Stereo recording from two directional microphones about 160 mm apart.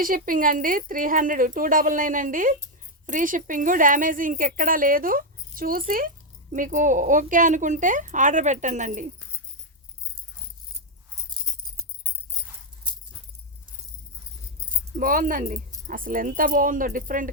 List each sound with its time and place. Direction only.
0.0 s a woman's voice: 60° right (ahead or behind)
14.9 s a woman's voice: 55° right (ahead or behind)